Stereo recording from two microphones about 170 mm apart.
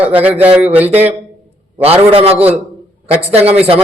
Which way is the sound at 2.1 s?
35° right (ahead or behind).